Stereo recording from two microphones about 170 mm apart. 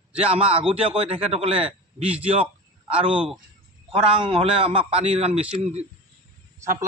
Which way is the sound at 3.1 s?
5° right (ahead or behind).